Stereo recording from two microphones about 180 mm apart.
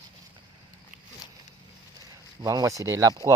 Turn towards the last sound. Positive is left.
turn(degrees=-20)  # may be behind; listen again after turning